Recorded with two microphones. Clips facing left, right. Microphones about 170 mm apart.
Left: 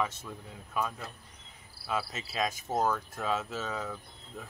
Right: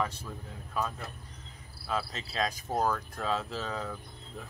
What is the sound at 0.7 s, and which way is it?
Speech, 5° left (ahead or behind).